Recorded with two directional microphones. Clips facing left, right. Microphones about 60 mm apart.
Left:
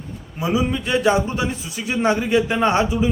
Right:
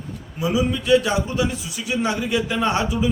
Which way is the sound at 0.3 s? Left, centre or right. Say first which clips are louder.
Left 1 dB; left.